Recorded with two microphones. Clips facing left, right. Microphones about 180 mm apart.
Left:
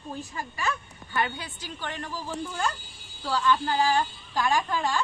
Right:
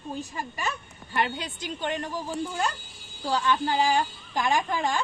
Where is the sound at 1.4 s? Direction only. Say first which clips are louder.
Right 5 dB; 20° right (ahead or behind).